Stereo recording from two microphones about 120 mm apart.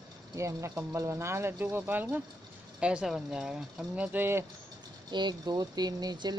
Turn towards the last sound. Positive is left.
turn(degrees=-35)  # may be behind; listen again after turning